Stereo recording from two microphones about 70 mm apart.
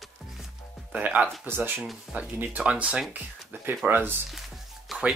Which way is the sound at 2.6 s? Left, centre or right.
Centre.